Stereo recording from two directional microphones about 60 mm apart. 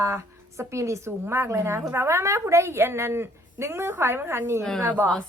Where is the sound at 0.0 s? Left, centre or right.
Right.